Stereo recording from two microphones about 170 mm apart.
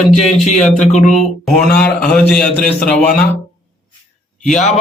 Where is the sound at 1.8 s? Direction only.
5° left (ahead or behind).